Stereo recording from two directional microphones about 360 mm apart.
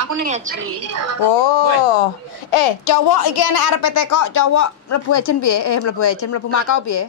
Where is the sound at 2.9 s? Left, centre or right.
Left.